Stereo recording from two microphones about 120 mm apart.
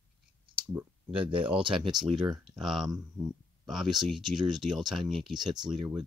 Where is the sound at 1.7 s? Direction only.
5° right (ahead or behind).